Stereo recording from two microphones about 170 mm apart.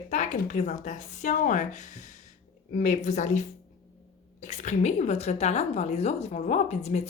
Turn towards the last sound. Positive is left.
turn(degrees=40)  # may be behind; listen again after turning